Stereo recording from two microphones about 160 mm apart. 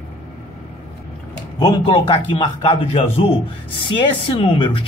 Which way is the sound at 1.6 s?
25° left (ahead or behind).